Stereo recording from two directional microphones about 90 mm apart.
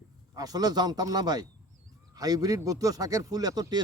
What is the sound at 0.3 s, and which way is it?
A man's voice, 45° right (ahead or behind).